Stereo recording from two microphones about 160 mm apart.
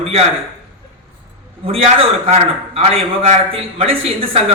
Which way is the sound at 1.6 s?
35° right (ahead or behind).